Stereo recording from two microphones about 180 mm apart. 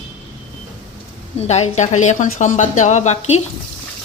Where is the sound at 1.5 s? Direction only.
40° left (ahead or behind).